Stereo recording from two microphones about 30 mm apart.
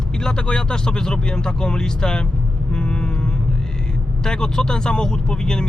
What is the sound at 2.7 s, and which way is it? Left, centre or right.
Vehicle, left.